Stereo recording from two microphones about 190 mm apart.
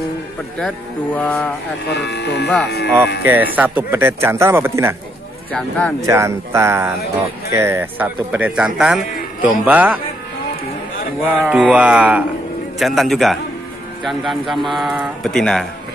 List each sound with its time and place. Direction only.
0.6 s mantra: 5° left (ahead or behind)
1.9 s speech: 60° left (ahead or behind)
3.3 s a man's voice: 10° right (ahead or behind)
5.5 s speech: 5° left (ahead or behind)
5.9 s a man's voice: 15° right (ahead or behind)
11.1 s speech: 5° right (ahead or behind)